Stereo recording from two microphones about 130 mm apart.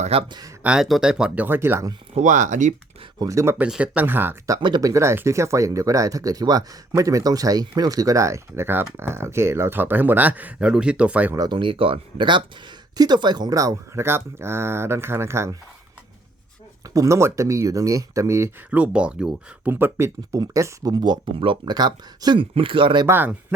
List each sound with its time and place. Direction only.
0.0 s speech: 50° right (ahead or behind)
0.3 s speech: 30° right (ahead or behind)
0.6 s speech: 5° right (ahead or behind)
2.1 s speech: 70° right (ahead or behind)
3.2 s speech: 25° right (ahead or behind)
4.5 s speech: 30° right (ahead or behind); by 11.3 s 10° right (ahead or behind)
11.3 s speech: 35° right (ahead or behind); by 15.5 s 20° right (ahead or behind)
16.8 s speech: 25° right (ahead or behind)
18.8 s speech: 10° right (ahead or behind); by 23.0 s 40° right (ahead or behind)
23.0 s speech: 15° right (ahead or behind)